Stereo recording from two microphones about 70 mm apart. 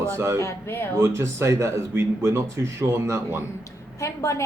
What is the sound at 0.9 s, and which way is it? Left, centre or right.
Speech, right.